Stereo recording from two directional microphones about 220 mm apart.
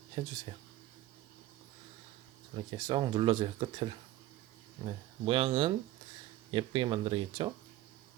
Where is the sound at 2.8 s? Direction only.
20° right (ahead or behind).